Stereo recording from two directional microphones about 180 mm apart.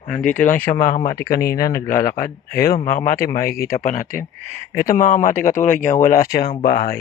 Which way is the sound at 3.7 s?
45° left (ahead or behind).